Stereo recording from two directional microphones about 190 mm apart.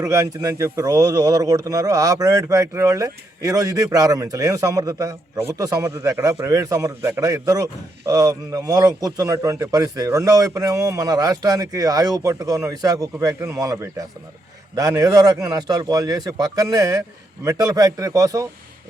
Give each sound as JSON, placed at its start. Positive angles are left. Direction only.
{"t": 0.0, "sound": "a man's voice", "side_deg": -15}